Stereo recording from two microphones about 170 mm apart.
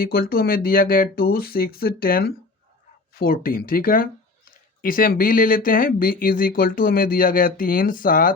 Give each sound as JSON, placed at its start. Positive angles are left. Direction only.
{"t": 0.0, "sound": "speech", "side_deg": 60}